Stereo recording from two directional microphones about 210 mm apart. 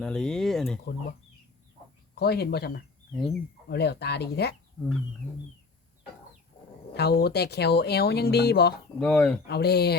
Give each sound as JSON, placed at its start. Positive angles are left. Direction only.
{"t": 0.0, "sound": "speech", "side_deg": 5}
{"t": 2.1, "sound": "speech", "side_deg": 50}
{"t": 6.9, "sound": "speech", "side_deg": 50}
{"t": 9.0, "sound": "speech", "side_deg": 5}
{"t": 9.5, "sound": "speech", "side_deg": 50}